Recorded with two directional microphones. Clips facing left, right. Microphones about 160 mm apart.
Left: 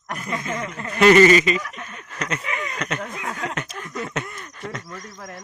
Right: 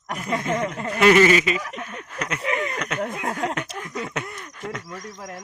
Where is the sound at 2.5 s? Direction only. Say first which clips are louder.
Right 5 dB; 50° right (ahead or behind).